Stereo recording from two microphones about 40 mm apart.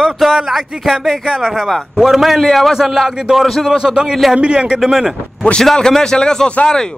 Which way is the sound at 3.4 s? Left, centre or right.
Centre.